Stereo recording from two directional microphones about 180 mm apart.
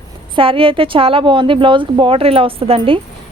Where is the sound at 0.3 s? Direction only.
30° right (ahead or behind).